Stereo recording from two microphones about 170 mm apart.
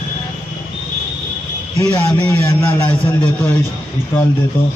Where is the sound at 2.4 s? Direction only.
20° left (ahead or behind).